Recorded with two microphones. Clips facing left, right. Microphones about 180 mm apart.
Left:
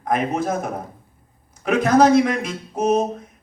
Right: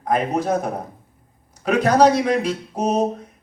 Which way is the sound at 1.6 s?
35° right (ahead or behind).